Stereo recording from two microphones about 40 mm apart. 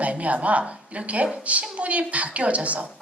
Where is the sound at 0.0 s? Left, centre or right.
Right.